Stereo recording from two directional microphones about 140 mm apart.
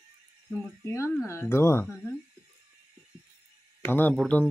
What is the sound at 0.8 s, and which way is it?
Speech, 20° left (ahead or behind).